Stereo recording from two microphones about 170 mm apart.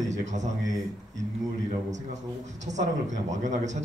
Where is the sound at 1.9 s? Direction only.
45° right (ahead or behind).